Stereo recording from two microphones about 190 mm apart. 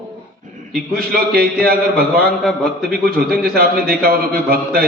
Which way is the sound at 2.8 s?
50° right (ahead or behind).